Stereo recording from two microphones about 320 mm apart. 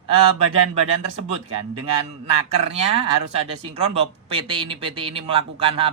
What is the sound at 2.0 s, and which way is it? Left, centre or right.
Speech, centre.